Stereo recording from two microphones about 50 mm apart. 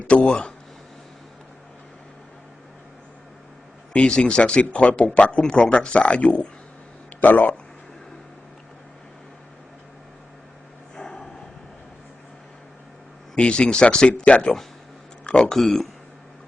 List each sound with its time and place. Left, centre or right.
0.0 s speech: left
3.9 s speech: left
7.2 s speech: left
10.9 s a sound: centre
13.3 s speech: left